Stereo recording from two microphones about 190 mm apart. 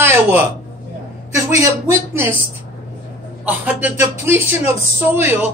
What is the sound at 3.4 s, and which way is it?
Speech, 10° right (ahead or behind).